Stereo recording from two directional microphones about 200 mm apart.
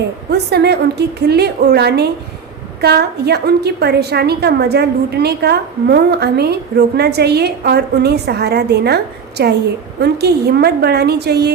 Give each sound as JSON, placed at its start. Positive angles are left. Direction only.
{"t": 0.3, "sound": "a woman's voice", "side_deg": -55}